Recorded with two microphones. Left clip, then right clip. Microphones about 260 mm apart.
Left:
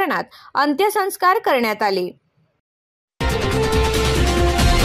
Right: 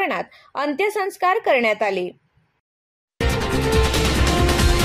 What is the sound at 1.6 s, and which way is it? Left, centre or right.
Speech, left.